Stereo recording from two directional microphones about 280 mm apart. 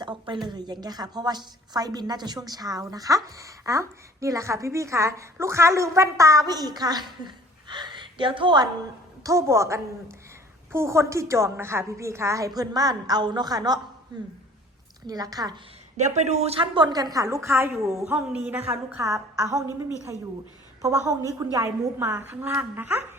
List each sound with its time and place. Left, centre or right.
0.0 s a sound: centre
0.4 s a woman's voice: centre
15.0 s a woman's voice: centre
16.0 s a woman's voice: right
20.8 s a woman's voice: centre